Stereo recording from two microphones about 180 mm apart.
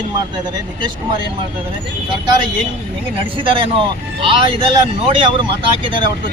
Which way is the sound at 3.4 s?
30° right (ahead or behind).